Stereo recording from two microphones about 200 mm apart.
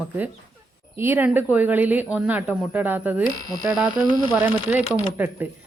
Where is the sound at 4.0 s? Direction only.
20° left (ahead or behind).